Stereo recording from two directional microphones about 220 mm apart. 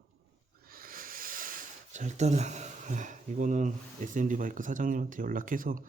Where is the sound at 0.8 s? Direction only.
40° right (ahead or behind).